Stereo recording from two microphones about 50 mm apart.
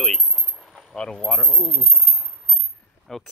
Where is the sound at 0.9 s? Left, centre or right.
Centre.